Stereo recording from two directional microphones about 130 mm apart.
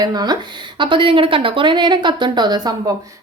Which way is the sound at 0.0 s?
30° right (ahead or behind).